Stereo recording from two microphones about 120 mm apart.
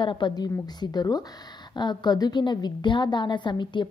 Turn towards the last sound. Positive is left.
turn(degrees=40)  # may be behind; listen again after turning